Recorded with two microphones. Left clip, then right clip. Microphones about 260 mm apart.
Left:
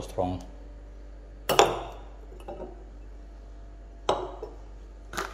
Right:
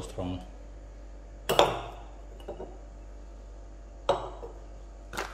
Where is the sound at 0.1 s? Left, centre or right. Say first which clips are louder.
Left 9 dB; centre.